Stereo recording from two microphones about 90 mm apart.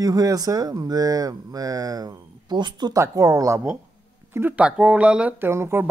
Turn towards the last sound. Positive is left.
turn(degrees=-30)  # may be behind; listen again after turning